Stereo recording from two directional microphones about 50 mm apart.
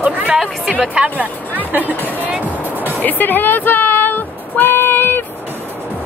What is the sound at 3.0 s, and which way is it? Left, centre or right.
Music, left.